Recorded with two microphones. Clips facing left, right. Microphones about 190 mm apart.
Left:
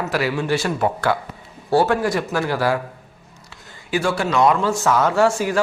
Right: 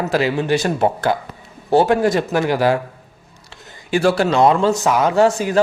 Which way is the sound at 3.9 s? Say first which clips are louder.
Right 5 dB; 30° right (ahead or behind).